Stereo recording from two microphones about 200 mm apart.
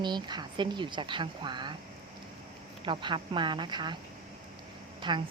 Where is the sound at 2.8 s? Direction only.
25° right (ahead or behind).